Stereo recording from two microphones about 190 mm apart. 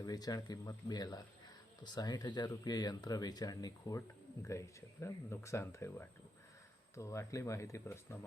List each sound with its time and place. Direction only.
0.0 s speech: 20° left (ahead or behind)